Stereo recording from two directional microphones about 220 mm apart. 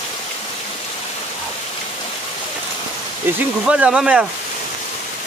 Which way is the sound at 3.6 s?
5° right (ahead or behind).